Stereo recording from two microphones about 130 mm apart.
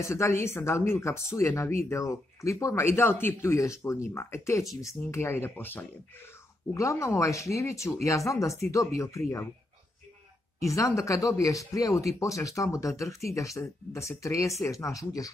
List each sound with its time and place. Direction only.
0.0 s speech: 20° left (ahead or behind)
10.6 s speech: 25° left (ahead or behind)